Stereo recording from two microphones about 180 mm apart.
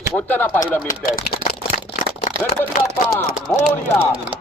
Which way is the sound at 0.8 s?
55° left (ahead or behind).